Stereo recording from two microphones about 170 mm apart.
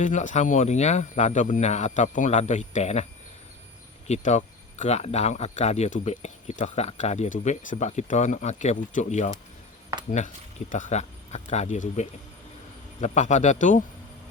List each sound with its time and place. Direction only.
0.0 s speech: 45° left (ahead or behind)